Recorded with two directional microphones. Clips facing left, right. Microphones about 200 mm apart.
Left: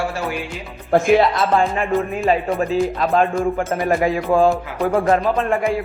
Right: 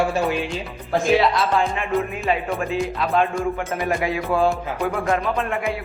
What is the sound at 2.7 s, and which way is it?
Music, 45° left (ahead or behind).